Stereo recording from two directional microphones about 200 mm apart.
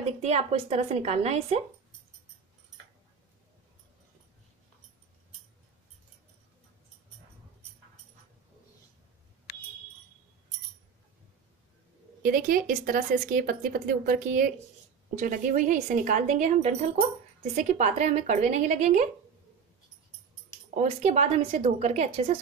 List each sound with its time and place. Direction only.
0.2 s speech: 35° right (ahead or behind)
12.2 s speech: 45° right (ahead or behind)
20.7 s speech: 35° right (ahead or behind)